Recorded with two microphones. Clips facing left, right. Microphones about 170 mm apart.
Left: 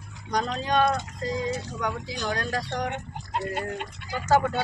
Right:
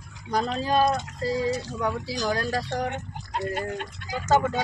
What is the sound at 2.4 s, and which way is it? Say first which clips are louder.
Speech: right 2 dB; 5° right (ahead or behind).